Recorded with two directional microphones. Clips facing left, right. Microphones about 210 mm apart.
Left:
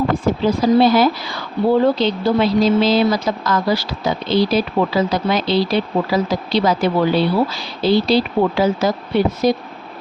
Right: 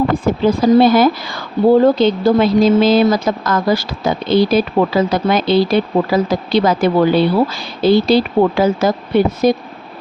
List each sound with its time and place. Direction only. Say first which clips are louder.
0.4 s a woman's voice: right 3 dB; 50° right (ahead or behind)